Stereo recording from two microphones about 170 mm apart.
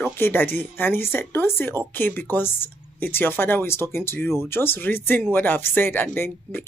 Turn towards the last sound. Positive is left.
turn(degrees=10)  # may be behind; listen again after turning